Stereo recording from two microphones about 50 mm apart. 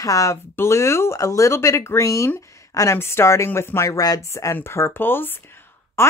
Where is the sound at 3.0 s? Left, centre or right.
Left.